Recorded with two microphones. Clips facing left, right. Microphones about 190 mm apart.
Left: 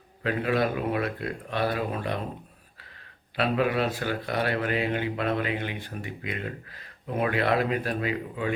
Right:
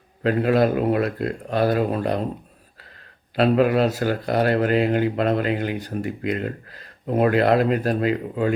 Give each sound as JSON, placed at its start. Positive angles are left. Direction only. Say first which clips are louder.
{"t": 0.2, "sound": "speech", "louder": "right 7 dB", "side_deg": -45}
{"t": 3.3, "sound": "speech", "louder": "right 7 dB", "side_deg": -40}